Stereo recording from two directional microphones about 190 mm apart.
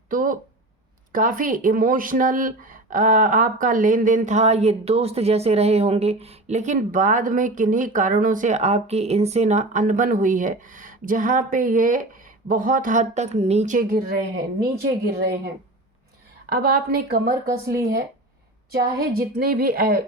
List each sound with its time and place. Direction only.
0.1 s a sound: 45° right (ahead or behind)
1.1 s speech: 45° right (ahead or behind)
18.7 s speech: 50° right (ahead or behind)